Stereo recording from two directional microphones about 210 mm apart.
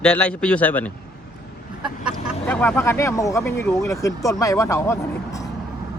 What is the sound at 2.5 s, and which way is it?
Speech, 5° left (ahead or behind).